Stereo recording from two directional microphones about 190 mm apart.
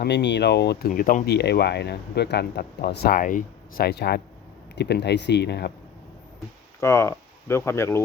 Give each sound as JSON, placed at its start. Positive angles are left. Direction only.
{"t": 0.0, "sound": "speech", "side_deg": 65}
{"t": 0.9, "sound": "speech", "side_deg": 45}
{"t": 6.7, "sound": "speech", "side_deg": 15}